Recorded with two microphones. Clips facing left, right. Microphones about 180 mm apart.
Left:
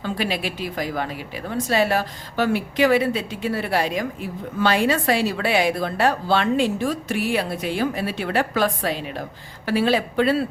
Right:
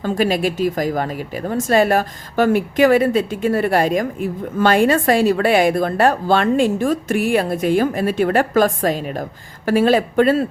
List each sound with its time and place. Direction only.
0.0 s a woman's voice: 45° right (ahead or behind)